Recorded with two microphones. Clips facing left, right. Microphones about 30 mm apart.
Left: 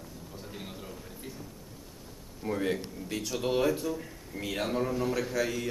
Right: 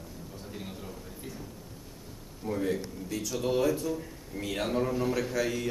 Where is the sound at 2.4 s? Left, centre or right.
Left.